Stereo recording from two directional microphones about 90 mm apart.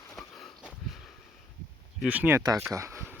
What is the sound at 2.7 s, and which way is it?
Speech, 30° right (ahead or behind).